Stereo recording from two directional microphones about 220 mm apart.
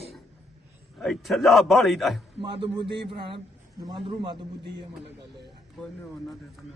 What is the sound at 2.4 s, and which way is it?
Speech, 20° right (ahead or behind).